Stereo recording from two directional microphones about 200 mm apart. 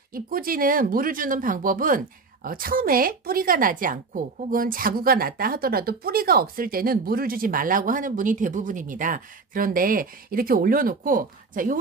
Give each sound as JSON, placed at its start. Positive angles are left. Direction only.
{"t": 0.1, "sound": "speech", "side_deg": -45}